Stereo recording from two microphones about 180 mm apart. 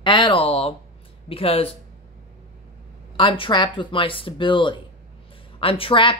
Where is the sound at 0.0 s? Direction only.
25° left (ahead or behind).